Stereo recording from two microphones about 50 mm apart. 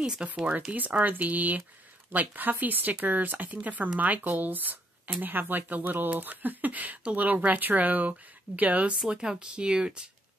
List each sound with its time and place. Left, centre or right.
0.0 s speech: centre
0.7 s speech: right
9.1 s speech: centre